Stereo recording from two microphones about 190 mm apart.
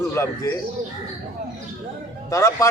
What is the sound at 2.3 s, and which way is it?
Speech, 15° left (ahead or behind).